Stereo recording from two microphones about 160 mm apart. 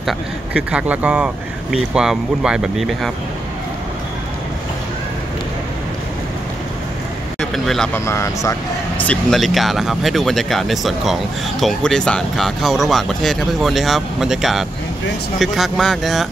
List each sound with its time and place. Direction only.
0.0 s speech: 10° right (ahead or behind)
7.3 s speech: centre (ahead or behind)
7.9 s speech: 20° left (ahead or behind)
9.0 s speech: 5° left (ahead or behind)